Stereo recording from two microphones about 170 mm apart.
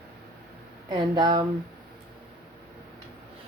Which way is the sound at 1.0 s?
25° right (ahead or behind).